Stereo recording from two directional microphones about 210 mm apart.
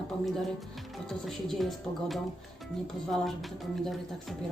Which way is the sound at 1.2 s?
Centre (ahead or behind).